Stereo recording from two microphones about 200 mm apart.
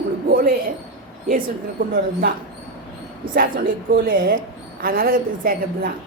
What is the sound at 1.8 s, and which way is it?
Speech, 60° right (ahead or behind).